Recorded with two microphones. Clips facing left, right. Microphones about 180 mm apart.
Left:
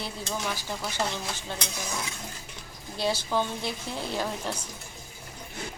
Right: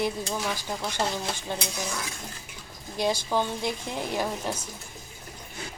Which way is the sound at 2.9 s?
15° right (ahead or behind).